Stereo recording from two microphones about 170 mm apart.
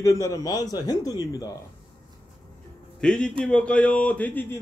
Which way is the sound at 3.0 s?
5° left (ahead or behind).